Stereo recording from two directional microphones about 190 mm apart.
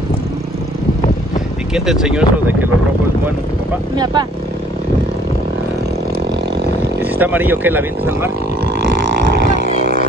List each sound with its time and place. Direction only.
1.7 s speech: 5° right (ahead or behind)
3.9 s speech: 25° right (ahead or behind)
7.2 s speech: 10° right (ahead or behind)
9.6 s a sound: 55° right (ahead or behind)